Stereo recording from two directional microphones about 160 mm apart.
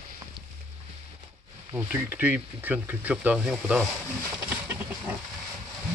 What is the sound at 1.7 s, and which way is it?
Speech, 10° right (ahead or behind).